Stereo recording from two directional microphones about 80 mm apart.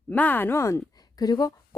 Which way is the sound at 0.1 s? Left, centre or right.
Left.